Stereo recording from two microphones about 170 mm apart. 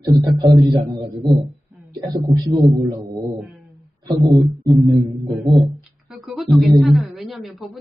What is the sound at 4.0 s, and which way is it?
Speech, 20° right (ahead or behind).